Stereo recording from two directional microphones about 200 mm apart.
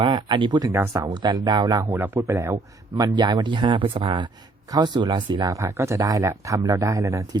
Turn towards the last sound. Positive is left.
turn(degrees=-15)  # may be behind; listen again after turning